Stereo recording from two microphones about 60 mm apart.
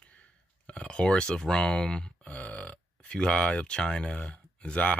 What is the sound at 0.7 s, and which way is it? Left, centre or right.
Speech, centre.